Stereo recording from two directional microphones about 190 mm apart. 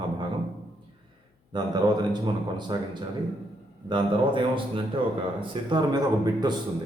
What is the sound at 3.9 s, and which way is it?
Speech, 25° right (ahead or behind).